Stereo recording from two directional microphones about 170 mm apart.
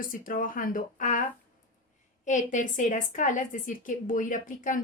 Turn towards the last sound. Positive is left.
turn(degrees=50)  # may be behind; listen again after turning